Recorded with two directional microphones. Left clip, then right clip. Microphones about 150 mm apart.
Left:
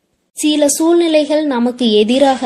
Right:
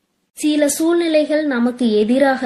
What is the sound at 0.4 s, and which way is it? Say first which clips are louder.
Speech: left 4 dB; 25° left (ahead or behind).